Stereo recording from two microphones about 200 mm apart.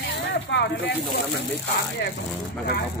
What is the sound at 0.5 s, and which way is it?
Speech, 60° left (ahead or behind).